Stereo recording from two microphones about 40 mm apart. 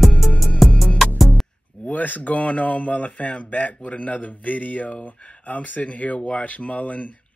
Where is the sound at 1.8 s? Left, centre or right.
Left.